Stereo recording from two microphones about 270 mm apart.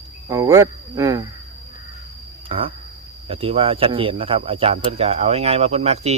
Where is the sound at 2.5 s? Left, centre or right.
Centre.